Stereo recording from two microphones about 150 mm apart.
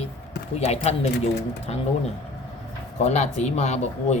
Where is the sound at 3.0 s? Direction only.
50° left (ahead or behind).